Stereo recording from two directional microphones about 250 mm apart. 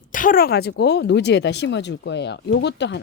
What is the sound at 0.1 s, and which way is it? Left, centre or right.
Speech, left.